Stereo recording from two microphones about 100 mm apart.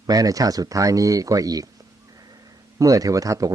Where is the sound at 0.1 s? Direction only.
35° right (ahead or behind).